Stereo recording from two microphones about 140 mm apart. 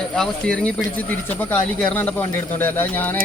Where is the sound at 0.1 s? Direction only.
5° left (ahead or behind).